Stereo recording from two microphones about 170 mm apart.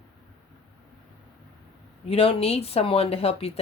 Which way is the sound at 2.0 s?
35° left (ahead or behind).